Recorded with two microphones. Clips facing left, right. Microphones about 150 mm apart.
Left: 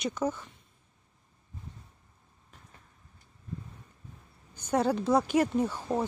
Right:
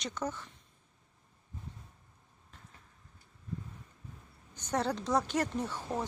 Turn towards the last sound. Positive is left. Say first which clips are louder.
# left 7 dB
turn(degrees=10)  # may be behind; listen again after turning